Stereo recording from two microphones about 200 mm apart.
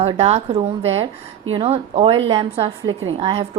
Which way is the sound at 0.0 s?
30° right (ahead or behind).